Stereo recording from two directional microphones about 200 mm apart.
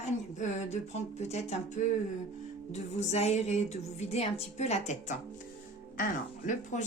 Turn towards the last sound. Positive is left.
turn(degrees=40)  # may be behind; listen again after turning